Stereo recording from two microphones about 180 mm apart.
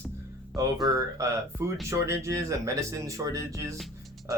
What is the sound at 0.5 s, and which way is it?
Speech, 20° right (ahead or behind).